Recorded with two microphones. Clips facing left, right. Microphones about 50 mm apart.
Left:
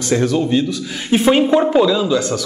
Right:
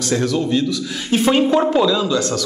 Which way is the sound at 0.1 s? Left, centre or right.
Left.